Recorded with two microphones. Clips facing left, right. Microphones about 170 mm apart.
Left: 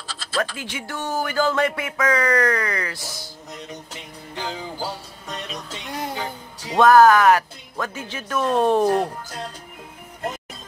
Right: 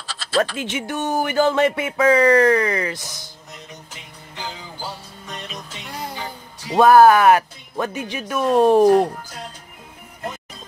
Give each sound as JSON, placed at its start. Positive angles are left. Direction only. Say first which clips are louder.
{"t": 0.0, "sound": "a sound", "louder": "right 6 dB", "side_deg": -75}
{"t": 0.6, "sound": "speech", "louder": "right 6 dB", "side_deg": -20}
{"t": 6.7, "sound": "speech", "louder": "right 2 dB", "side_deg": -10}